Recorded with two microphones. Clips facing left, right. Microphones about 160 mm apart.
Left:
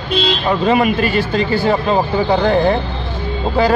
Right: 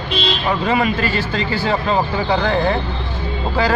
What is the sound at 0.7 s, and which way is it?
Speech, 20° left (ahead or behind).